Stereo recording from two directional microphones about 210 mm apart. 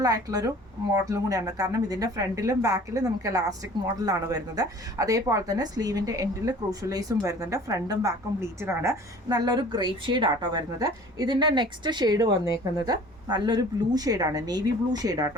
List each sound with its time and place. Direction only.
0.0 s a woman's voice: 15° right (ahead or behind)